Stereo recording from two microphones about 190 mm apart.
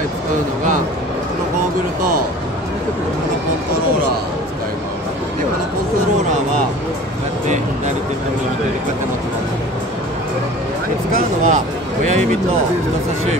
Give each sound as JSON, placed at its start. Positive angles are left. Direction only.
{"t": 11.4, "sound": "speech", "side_deg": -40}